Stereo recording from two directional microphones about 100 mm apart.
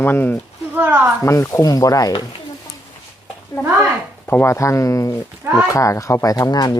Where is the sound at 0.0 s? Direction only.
20° left (ahead or behind).